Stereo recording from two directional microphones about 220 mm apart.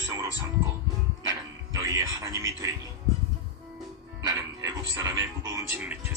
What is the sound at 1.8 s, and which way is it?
Speech, 15° right (ahead or behind).